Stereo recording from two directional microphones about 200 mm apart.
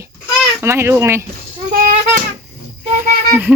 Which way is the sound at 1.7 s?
40° right (ahead or behind).